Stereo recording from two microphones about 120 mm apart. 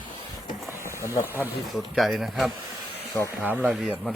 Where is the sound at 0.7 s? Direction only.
20° left (ahead or behind).